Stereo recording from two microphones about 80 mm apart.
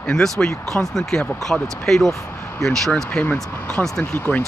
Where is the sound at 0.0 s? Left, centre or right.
Centre.